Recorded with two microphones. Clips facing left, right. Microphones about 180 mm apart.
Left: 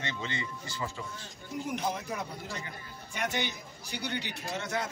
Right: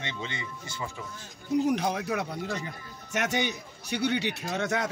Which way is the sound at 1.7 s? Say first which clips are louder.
Right 6 dB; 75° right (ahead or behind).